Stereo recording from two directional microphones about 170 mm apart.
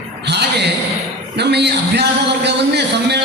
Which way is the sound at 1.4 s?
80° right.